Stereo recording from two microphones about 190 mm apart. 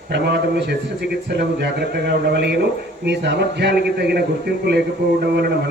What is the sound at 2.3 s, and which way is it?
A man's voice, 60° right (ahead or behind).